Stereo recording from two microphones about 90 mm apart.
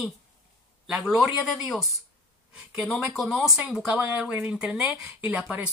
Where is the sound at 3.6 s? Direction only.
15° right (ahead or behind).